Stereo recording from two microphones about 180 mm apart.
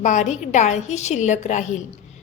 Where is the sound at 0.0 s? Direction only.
40° left (ahead or behind).